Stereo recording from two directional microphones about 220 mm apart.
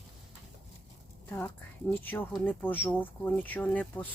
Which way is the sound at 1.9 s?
10° left (ahead or behind).